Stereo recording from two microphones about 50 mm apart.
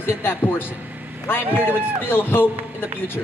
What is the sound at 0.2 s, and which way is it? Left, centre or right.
A man's voice, left.